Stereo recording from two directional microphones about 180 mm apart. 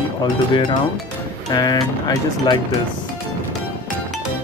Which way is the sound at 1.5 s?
20° left (ahead or behind).